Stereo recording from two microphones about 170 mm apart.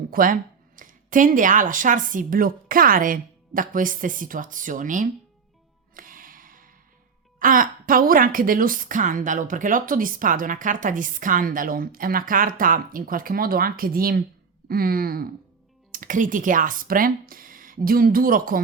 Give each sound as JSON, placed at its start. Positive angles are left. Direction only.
{"t": 0.1, "sound": "a woman's voice", "side_deg": -55}
{"t": 5.9, "sound": "music", "side_deg": -55}
{"t": 7.3, "sound": "a woman's voice", "side_deg": -55}
{"t": 14.7, "sound": "a sound", "side_deg": -60}
{"t": 15.9, "sound": "speech", "side_deg": -50}